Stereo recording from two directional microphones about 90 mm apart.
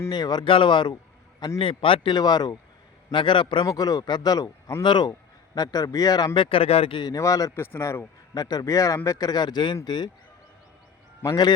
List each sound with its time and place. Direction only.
0.1 s speech: 50° left (ahead or behind)
0.4 s a man's voice: 70° left (ahead or behind)
1.5 s a man's voice: 90° left
2.1 s speech: 50° left (ahead or behind)
3.1 s a man's voice: 65° left (ahead or behind)
3.7 s a man's voice: 45° left (ahead or behind); by 7.0 s 90° left
7.2 s a man's voice: 40° left (ahead or behind)
7.5 s a man's voice: 25° left (ahead or behind)
8.4 s a man's voice: 45° left (ahead or behind)